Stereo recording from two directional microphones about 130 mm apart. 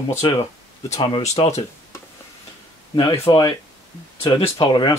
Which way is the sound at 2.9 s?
35° left (ahead or behind).